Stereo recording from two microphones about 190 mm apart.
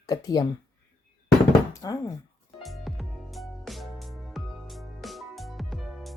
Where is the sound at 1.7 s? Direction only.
20° left (ahead or behind).